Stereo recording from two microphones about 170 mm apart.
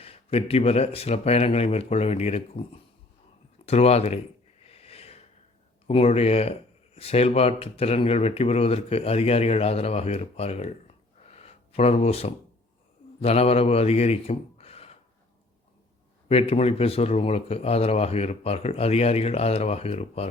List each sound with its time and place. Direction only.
0.0 s speech: 35° left (ahead or behind)
3.7 s speech: 40° left (ahead or behind)
4.6 s a sound: 35° left (ahead or behind)
5.9 s a man's voice: 35° left (ahead or behind)
16.3 s speech: 35° left (ahead or behind)